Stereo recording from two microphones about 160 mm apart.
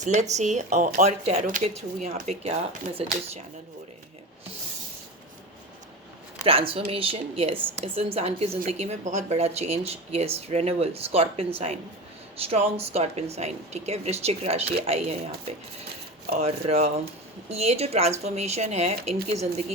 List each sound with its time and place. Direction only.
0.0 s speech: 50° right (ahead or behind)
6.4 s speech: 35° right (ahead or behind)